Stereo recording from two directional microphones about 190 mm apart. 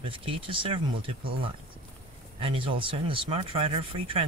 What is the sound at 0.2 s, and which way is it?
Speech, 30° right (ahead or behind).